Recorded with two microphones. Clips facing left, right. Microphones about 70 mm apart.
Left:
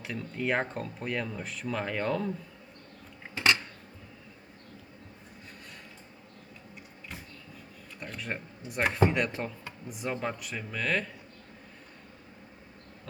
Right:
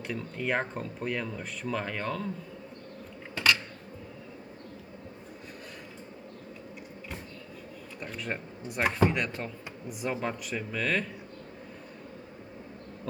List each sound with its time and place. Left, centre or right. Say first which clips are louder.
0.0 s speech: even; centre
3.3 s a sound: even; left
8.0 s speech: right 1 dB; centre